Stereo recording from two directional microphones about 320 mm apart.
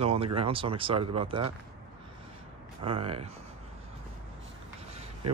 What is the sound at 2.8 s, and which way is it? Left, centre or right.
Speech, centre.